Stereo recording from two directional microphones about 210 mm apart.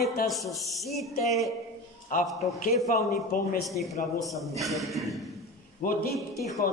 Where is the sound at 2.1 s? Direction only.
40° left (ahead or behind).